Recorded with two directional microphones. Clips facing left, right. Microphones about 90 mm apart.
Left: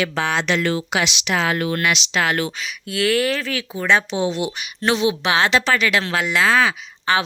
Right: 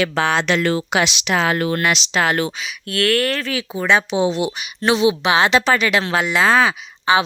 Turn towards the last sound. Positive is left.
turn(degrees=-10)  # may be behind; listen again after turning